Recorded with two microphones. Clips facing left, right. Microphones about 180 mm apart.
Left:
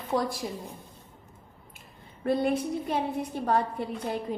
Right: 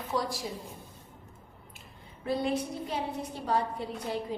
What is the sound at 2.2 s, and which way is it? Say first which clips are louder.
A woman's voice: left 4 dB; 55° left (ahead or behind).